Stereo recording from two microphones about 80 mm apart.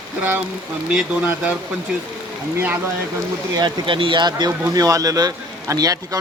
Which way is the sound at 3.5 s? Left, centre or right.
Right.